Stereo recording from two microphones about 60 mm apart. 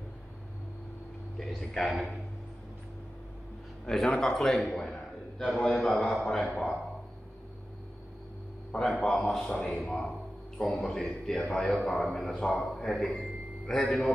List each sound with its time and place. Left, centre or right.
1.4 s a man's voice: centre
3.8 s a man's voice: centre
5.9 s a man's voice: centre
8.8 s a man's voice: centre